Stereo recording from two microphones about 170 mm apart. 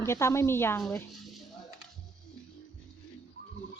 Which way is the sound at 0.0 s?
15° left (ahead or behind).